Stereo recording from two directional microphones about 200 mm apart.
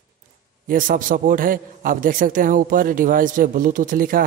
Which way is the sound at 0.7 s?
45° right (ahead or behind).